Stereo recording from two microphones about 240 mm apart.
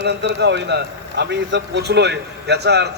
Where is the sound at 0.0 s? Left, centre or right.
Right.